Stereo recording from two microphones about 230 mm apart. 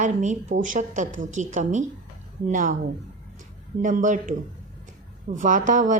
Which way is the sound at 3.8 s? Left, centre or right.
Right.